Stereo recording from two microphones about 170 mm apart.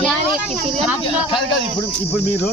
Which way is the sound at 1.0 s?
30° left (ahead or behind).